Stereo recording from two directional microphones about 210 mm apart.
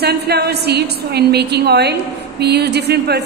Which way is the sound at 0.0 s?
50° right (ahead or behind).